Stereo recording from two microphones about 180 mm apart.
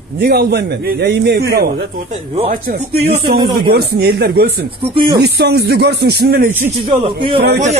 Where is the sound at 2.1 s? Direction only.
35° right (ahead or behind).